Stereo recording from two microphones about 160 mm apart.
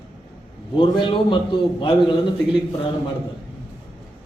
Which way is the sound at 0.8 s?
30° left (ahead or behind).